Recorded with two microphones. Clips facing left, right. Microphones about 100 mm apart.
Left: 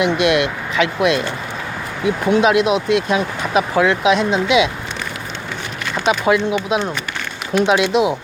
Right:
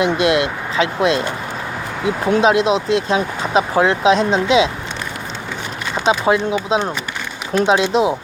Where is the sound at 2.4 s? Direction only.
30° right (ahead or behind).